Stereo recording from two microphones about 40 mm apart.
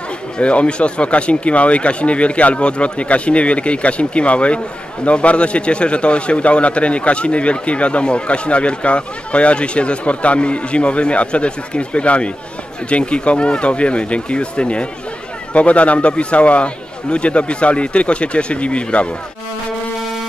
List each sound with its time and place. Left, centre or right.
0.4 s a man's voice: left